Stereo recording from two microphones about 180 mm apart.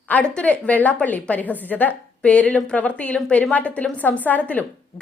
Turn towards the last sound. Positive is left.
turn(degrees=10)  # may be behind; listen again after turning